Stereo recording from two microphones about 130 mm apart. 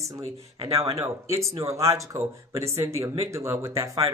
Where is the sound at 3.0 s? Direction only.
45° right (ahead or behind).